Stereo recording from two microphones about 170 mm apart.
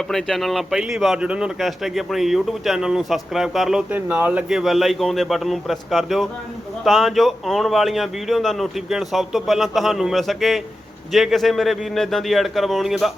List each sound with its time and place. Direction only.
0.1 s speech: centre (ahead or behind)